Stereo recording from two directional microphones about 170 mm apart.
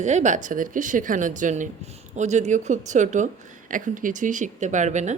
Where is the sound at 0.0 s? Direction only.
45° right (ahead or behind).